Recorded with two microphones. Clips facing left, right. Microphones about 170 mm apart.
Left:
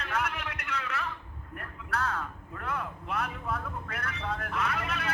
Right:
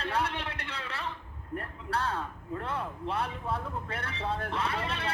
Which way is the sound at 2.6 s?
30° right (ahead or behind).